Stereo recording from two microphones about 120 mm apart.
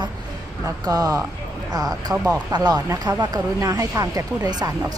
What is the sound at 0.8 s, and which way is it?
Speech, 30° right (ahead or behind).